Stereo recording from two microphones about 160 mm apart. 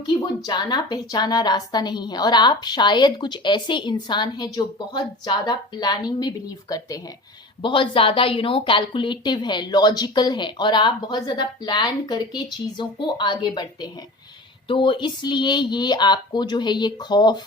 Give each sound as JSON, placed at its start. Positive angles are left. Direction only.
{"t": 0.1, "sound": "a woman's voice", "side_deg": 25}